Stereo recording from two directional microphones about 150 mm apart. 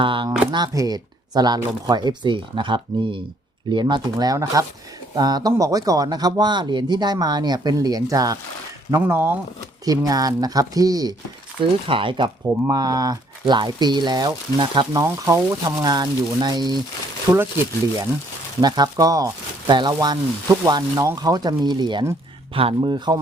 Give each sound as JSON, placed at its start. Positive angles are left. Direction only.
{"t": 0.0, "sound": "speech", "side_deg": -35}
{"t": 11.9, "sound": "speech", "side_deg": -35}
{"t": 17.3, "sound": "speech", "side_deg": -15}
{"t": 18.6, "sound": "speech", "side_deg": -25}